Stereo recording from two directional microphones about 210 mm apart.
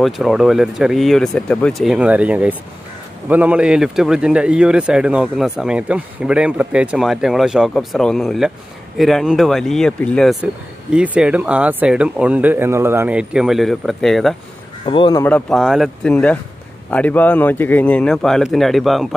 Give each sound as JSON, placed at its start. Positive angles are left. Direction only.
{"t": 0.0, "sound": "speech", "side_deg": 0}
{"t": 14.9, "sound": "speech", "side_deg": 20}
{"t": 15.2, "sound": "a man's voice", "side_deg": 5}